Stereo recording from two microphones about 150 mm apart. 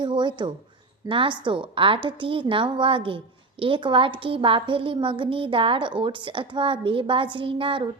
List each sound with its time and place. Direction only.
0.0 s a woman's voice: 30° right (ahead or behind)